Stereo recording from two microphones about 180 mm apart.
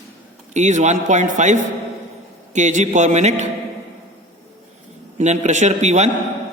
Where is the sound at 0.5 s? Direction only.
40° right (ahead or behind).